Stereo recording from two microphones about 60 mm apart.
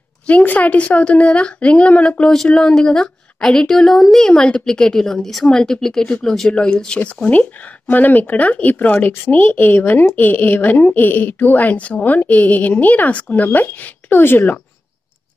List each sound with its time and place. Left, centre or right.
0.3 s a woman's voice: left
7.2 s a woman's voice: left